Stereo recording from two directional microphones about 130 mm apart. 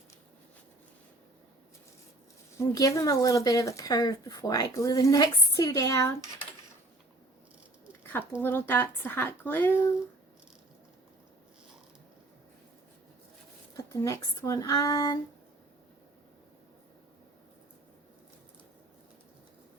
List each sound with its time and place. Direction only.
2.6 s speech: 25° left (ahead or behind)
8.4 s a woman's voice: 15° left (ahead or behind)
13.7 s speech: 25° left (ahead or behind)